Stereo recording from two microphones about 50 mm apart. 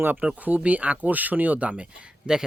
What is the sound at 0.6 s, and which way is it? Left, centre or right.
Speech, right.